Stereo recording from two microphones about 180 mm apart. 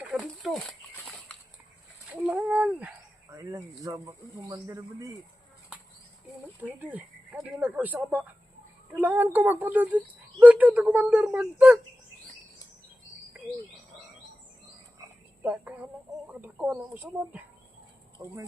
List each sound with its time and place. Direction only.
0.2 s a sound: centre (ahead or behind)
2.2 s speech: 5° right (ahead or behind)
6.2 s speech: 10° right (ahead or behind)
15.4 s speech: 10° right (ahead or behind)